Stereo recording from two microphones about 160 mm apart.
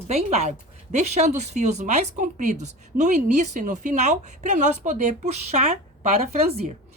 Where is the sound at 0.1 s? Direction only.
40° right (ahead or behind).